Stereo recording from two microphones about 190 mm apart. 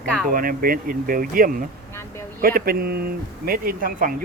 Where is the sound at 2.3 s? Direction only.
50° right (ahead or behind).